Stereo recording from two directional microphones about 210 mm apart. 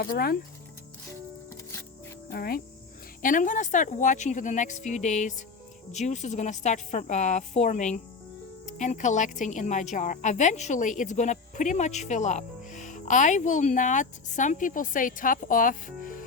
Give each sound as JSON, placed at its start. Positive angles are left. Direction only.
{"t": 0.0, "sound": "speech", "side_deg": 45}
{"t": 2.3, "sound": "a woman's voice", "side_deg": 45}